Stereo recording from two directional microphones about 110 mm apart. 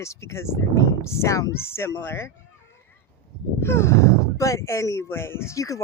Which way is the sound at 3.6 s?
25° left (ahead or behind).